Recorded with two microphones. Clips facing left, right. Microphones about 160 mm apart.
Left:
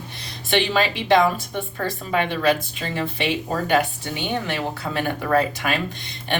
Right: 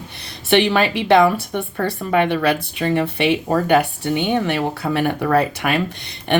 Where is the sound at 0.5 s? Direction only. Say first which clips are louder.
Right 5 dB; 60° right (ahead or behind).